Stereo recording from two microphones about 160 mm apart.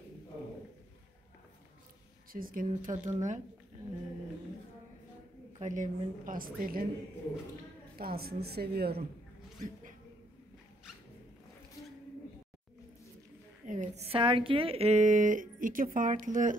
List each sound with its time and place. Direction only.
2.3 s a woman's voice: 60° right (ahead or behind)
5.6 s a woman's voice: 50° right (ahead or behind)
8.0 s a woman's voice: 75° right (ahead or behind)
13.7 s speech: 45° right (ahead or behind)